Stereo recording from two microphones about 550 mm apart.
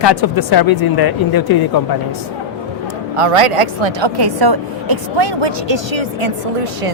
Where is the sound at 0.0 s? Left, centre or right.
Left.